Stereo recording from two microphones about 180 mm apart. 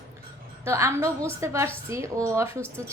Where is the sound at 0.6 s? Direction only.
15° right (ahead or behind).